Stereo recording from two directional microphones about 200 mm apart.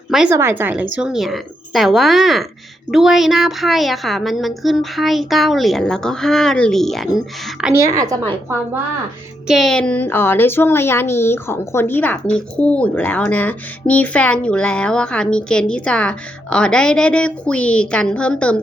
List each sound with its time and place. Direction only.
0.1 s a woman's voice: 5° right (ahead or behind)
7.7 s a woman's voice: 15° right (ahead or behind)
9.5 s a woman's voice: centre (ahead or behind)